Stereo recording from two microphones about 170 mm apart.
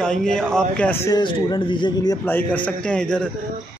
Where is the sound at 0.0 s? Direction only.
5° left (ahead or behind).